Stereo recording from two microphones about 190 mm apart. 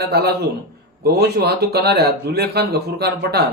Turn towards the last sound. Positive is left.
turn(degrees=-60)  # may be behind; listen again after turning